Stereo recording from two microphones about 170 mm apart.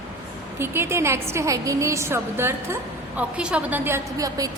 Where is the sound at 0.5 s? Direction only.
15° right (ahead or behind).